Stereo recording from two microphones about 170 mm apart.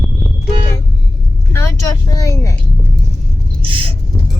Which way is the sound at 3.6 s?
30° right (ahead or behind).